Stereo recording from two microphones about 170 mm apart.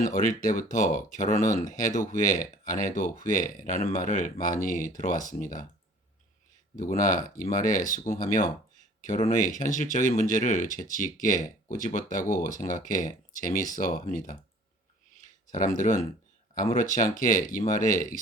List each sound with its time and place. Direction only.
0.0 s speech: 50° left (ahead or behind)
6.7 s speech: 50° left (ahead or behind)
15.5 s speech: 50° left (ahead or behind)